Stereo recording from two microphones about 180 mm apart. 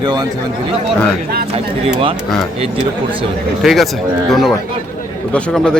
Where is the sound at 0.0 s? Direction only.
25° right (ahead or behind).